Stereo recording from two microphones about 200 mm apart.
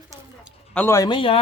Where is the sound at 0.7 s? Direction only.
10° left (ahead or behind).